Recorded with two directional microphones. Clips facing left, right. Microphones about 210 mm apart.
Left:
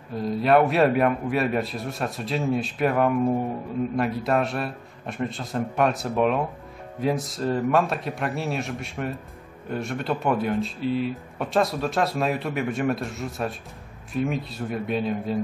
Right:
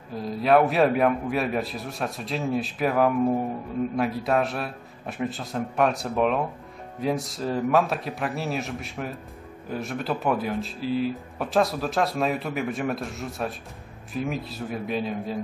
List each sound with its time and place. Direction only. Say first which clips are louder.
0.1 s speech: left 1 dB; centre (ahead or behind)